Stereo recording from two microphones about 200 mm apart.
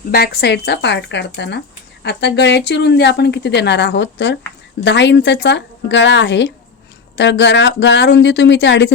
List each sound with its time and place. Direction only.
0.1 s speech: 50° left (ahead or behind)